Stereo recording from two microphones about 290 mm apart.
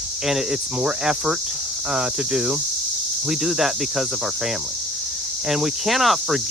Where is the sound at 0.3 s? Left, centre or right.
Centre.